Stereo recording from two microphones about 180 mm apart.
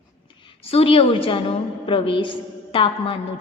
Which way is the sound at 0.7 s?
30° left (ahead or behind).